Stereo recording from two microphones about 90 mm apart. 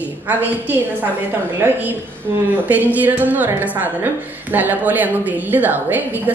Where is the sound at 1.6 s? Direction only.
20° right (ahead or behind).